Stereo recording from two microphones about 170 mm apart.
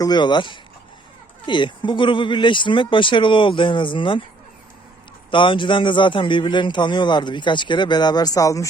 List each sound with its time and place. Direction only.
0.0 s a man's voice: 25° left (ahead or behind)
5.3 s a man's voice: 30° left (ahead or behind)